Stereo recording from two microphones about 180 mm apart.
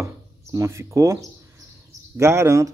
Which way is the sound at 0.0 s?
15° right (ahead or behind).